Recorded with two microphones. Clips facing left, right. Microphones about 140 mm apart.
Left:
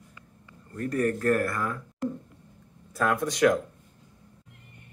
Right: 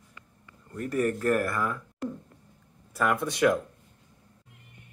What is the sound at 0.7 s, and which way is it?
Speech, 15° right (ahead or behind).